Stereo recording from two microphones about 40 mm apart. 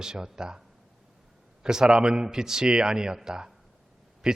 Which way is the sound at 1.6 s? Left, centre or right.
Centre.